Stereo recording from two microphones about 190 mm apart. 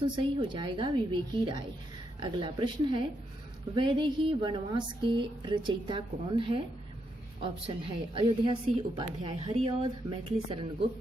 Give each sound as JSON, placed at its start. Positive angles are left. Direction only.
{"t": 0.0, "sound": "a woman's voice", "side_deg": -25}